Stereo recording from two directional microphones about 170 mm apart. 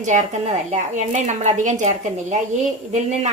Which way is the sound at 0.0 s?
45° right (ahead or behind).